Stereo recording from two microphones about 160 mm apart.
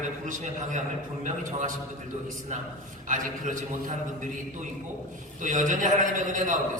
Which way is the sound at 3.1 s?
55° right (ahead or behind).